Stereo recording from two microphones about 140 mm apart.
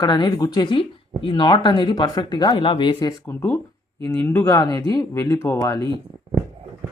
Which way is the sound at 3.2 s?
20° left (ahead or behind).